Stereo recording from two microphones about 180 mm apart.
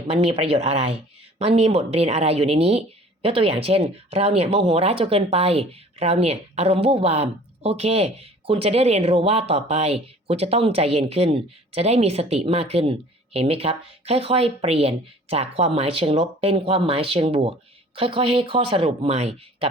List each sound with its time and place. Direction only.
0.1 s speech: 35° right (ahead or behind)